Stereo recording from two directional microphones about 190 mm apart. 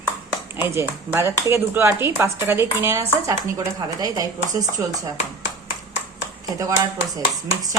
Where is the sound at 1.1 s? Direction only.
15° right (ahead or behind).